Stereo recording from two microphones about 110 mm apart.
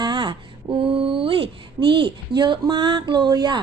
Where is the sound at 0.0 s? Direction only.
45° right (ahead or behind).